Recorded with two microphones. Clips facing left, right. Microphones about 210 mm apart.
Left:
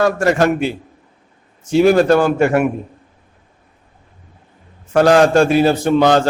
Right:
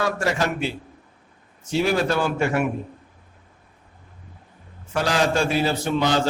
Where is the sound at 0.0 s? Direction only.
50° left (ahead or behind).